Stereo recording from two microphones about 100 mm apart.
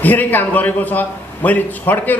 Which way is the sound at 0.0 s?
20° left (ahead or behind).